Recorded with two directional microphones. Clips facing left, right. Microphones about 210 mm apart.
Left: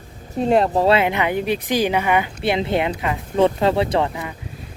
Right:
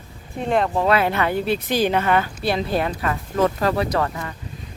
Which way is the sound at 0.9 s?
15° left (ahead or behind).